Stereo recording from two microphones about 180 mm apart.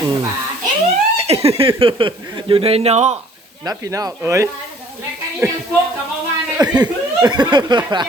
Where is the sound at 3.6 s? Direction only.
20° right (ahead or behind).